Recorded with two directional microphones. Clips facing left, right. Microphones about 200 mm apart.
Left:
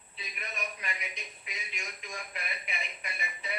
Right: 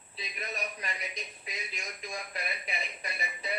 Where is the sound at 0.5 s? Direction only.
35° right (ahead or behind).